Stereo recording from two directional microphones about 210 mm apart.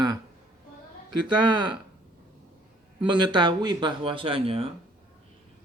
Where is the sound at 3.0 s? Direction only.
20° right (ahead or behind).